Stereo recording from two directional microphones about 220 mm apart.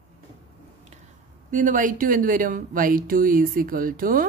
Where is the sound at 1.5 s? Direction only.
35° right (ahead or behind).